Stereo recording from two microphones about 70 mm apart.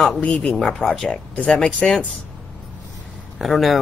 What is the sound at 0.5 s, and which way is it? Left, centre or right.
Speech, centre.